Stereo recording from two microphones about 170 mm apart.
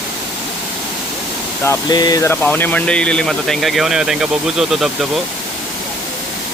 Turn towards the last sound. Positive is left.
turn(degrees=0)  # may be behind; listen again after turning